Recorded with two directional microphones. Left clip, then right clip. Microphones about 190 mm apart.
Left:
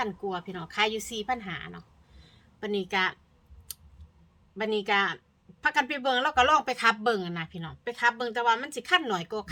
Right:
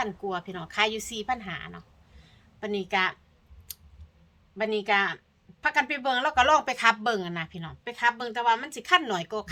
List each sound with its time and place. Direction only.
0.0 s speech: centre (ahead or behind)
2.2 s a sound: 10° left (ahead or behind)
4.5 s speech: 10° left (ahead or behind)